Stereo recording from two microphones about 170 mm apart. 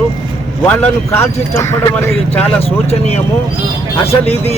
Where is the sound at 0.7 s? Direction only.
15° left (ahead or behind).